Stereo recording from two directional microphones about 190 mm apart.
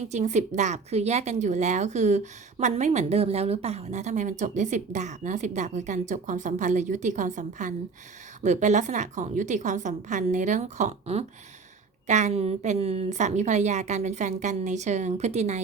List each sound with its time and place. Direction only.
0.1 s a woman's voice: 40° right (ahead or behind)